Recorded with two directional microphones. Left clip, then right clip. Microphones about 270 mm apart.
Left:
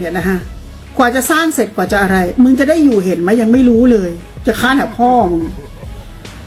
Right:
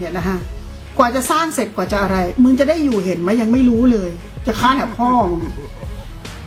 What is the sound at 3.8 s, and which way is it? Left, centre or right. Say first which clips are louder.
Speech: left 5 dB; centre.